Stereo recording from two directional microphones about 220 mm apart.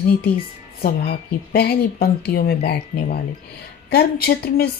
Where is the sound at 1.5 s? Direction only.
45° left (ahead or behind).